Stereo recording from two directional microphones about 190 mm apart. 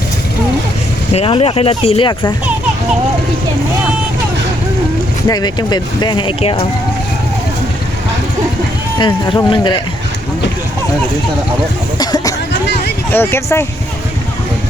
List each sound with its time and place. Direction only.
1.1 s speech: 30° left (ahead or behind)
5.3 s speech: 20° left (ahead or behind)
9.0 s speech: 25° left (ahead or behind)
11.9 s a sound: 20° left (ahead or behind)
13.1 s speech: 10° left (ahead or behind)